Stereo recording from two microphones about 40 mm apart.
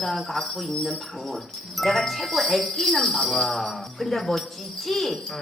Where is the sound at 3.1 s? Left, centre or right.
Centre.